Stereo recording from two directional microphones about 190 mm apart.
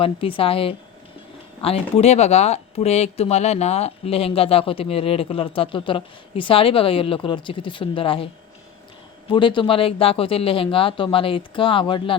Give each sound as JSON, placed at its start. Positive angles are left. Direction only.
{"t": 0.0, "sound": "speech", "side_deg": 30}
{"t": 9.3, "sound": "speech", "side_deg": 25}